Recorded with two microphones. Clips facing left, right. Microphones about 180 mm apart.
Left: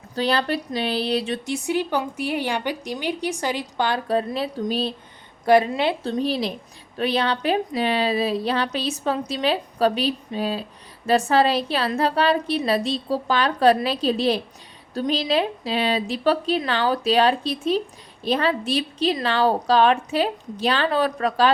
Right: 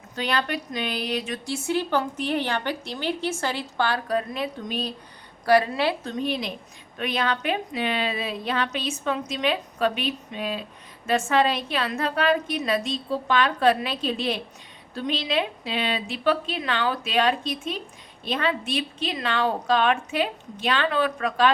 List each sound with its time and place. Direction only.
0.2 s a woman's voice: 35° left (ahead or behind)
1.5 s a woman's voice: 15° left (ahead or behind)
5.5 s a woman's voice: 20° left (ahead or behind)